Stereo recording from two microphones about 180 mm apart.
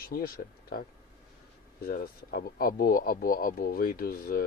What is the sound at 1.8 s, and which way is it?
Speech, 55° left (ahead or behind).